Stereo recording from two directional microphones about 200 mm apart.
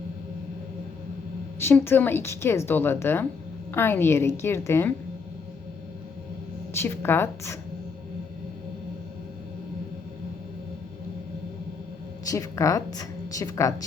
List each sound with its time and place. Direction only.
1.5 s a woman's voice: 10° left (ahead or behind)
6.7 s a woman's voice: 10° left (ahead or behind)
12.3 s a woman's voice: 15° left (ahead or behind)